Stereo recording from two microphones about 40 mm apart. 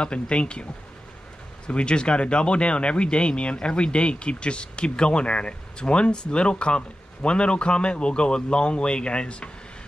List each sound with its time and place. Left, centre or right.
0.0 s speech: left
1.7 s speech: left